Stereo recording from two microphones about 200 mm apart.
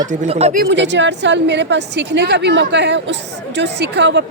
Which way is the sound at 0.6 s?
65° right (ahead or behind).